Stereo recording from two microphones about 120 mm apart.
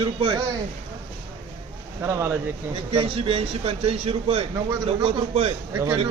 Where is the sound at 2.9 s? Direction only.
50° right (ahead or behind).